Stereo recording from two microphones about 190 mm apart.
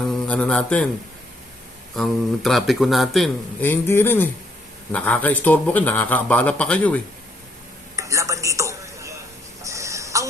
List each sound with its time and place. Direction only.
0.1 s speech: 5° left (ahead or behind)
2.0 s a man's voice: centre (ahead or behind)
3.7 s a man's voice: 10° left (ahead or behind)
7.9 s a sound: 15° right (ahead or behind)
9.6 s tick-tock: 15° right (ahead or behind)